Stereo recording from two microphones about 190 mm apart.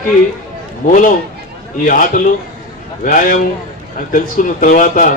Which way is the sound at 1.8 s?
45° left (ahead or behind).